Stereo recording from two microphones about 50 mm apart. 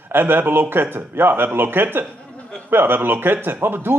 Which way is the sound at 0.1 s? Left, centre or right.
Right.